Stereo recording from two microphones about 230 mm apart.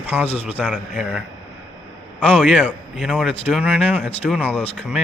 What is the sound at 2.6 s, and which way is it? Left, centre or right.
Speech, centre.